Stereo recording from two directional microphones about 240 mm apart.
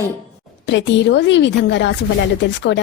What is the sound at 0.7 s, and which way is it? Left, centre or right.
A woman's voice, left.